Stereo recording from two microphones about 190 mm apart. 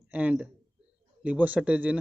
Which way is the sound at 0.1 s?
5° right (ahead or behind).